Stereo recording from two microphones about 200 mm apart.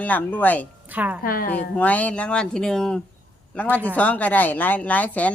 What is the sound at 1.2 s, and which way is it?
Speech, 45° left (ahead or behind).